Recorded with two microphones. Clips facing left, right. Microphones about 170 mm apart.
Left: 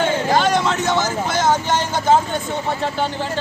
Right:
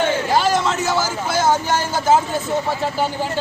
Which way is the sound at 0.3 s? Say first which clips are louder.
Right 1 dB; 5° right (ahead or behind).